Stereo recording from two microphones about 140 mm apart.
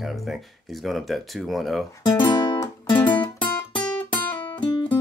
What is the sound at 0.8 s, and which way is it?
Speech, centre (ahead or behind).